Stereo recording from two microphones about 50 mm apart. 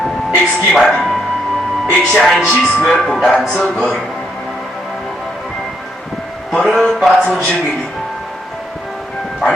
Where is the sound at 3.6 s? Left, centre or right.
Centre.